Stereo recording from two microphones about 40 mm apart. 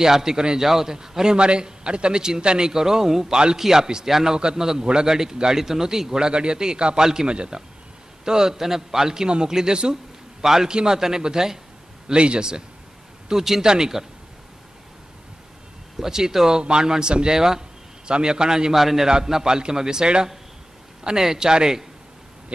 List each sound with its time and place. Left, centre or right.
0.0 s a man's voice: centre
12.1 s a man's voice: right
16.0 s a man's voice: centre
18.8 s a man's voice: centre